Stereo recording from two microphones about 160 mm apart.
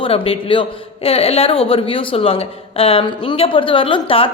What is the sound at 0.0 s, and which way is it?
Speech, 35° left (ahead or behind).